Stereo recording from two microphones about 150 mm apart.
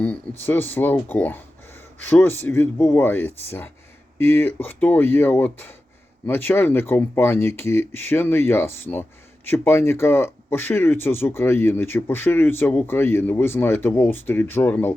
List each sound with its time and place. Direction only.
0.0 s speech: 10° left (ahead or behind)